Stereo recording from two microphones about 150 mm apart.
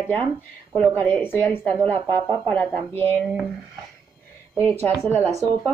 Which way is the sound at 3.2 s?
Centre (ahead or behind).